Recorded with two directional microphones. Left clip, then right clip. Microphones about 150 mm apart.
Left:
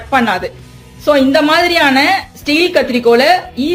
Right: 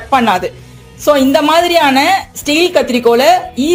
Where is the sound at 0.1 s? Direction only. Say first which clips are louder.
Right 2 dB; 35° right (ahead or behind).